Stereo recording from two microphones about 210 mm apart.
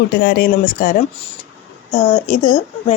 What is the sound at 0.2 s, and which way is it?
Speech, 50° left (ahead or behind).